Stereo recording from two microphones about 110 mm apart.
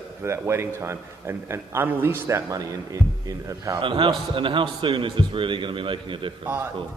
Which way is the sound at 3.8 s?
50° right (ahead or behind).